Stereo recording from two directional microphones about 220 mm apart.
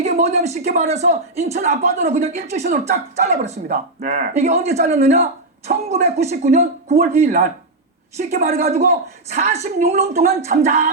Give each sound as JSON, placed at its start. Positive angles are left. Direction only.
{"t": 0.0, "sound": "speech", "side_deg": -30}